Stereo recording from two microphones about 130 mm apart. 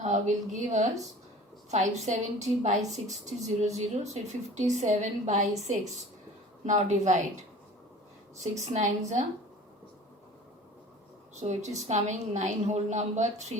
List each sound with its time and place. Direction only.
0.0 s a woman's voice: 70° right (ahead or behind)
8.7 s a woman's voice: 65° right (ahead or behind)
11.3 s a woman's voice: 65° right (ahead or behind)